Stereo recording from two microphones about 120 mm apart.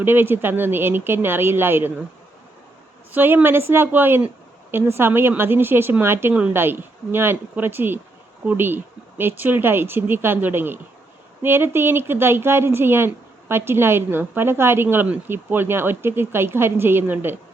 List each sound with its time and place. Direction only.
0.0 s speech: 15° right (ahead or behind)
3.1 s a woman's voice: 15° right (ahead or behind)